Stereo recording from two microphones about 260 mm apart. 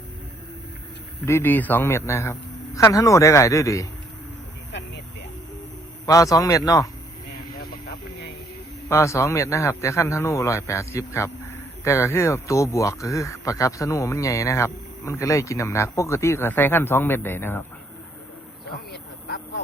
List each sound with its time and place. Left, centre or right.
1.2 s speech: centre
6.1 s speech: centre
7.5 s vehicle: left
8.9 s speech: centre
18.6 s quack: left